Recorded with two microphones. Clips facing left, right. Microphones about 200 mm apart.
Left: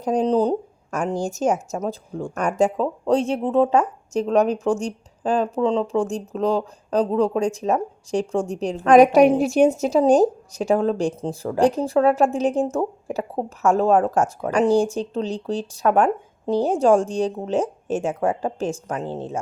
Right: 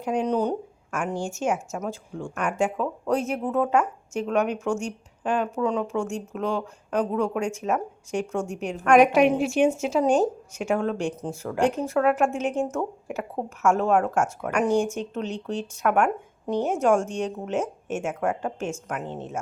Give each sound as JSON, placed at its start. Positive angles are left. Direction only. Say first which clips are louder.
{"t": 0.0, "sound": "a woman's voice", "louder": "left 5 dB", "side_deg": 35}